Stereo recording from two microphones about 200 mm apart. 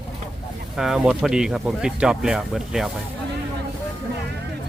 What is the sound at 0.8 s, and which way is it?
Speech, 5° right (ahead or behind).